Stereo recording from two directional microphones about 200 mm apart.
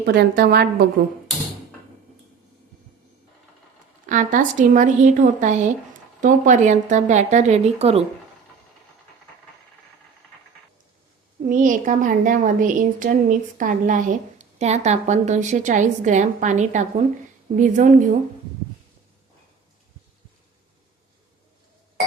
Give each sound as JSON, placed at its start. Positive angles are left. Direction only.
{"t": 0.0, "sound": "a woman's voice", "side_deg": -55}
{"t": 4.1, "sound": "a woman's voice", "side_deg": -40}
{"t": 11.4, "sound": "a woman's voice", "side_deg": -40}